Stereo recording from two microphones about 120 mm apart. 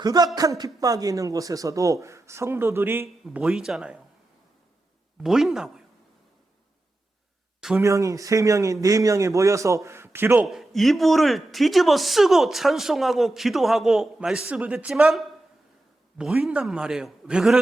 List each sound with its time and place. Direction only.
0.0 s a sound: 35° right (ahead or behind)
0.3 s speech: 35° right (ahead or behind)
3.2 s speech: 5° right (ahead or behind)
5.2 s speech: 5° right (ahead or behind)
7.8 s speech: 25° right (ahead or behind)
10.4 s speech: centre (ahead or behind)